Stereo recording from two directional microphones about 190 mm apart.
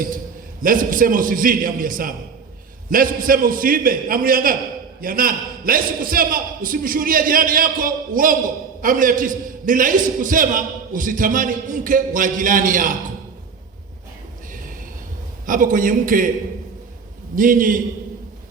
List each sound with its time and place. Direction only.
0.6 s a man's voice: 45° right (ahead or behind)
15.4 s a man's voice: 45° right (ahead or behind)
17.3 s a man's voice: 45° right (ahead or behind)